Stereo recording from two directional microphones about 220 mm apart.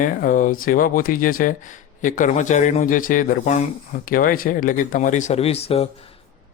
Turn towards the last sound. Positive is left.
turn(degrees=25)  # may be behind; listen again after turning